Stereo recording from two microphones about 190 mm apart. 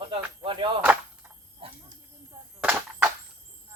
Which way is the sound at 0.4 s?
25° right (ahead or behind).